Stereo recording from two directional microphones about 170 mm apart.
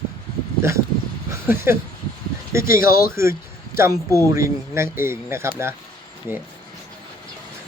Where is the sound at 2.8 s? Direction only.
60° left (ahead or behind).